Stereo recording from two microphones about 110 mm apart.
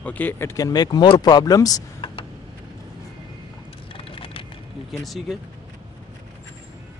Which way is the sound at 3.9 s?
55° left (ahead or behind).